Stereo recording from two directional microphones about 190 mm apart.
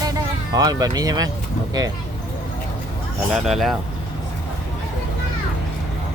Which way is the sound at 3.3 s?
Centre (ahead or behind).